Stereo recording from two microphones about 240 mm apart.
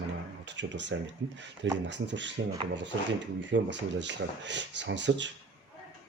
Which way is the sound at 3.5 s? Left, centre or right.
Right.